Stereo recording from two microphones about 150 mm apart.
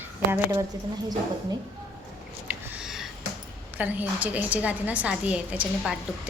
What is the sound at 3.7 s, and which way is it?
A woman's voice, 10° right (ahead or behind).